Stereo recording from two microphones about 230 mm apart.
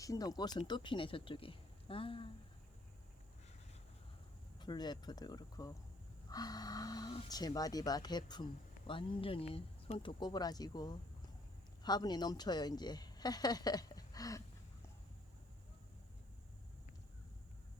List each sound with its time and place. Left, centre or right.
0.0 s a woman's voice: centre
4.6 s a woman's voice: centre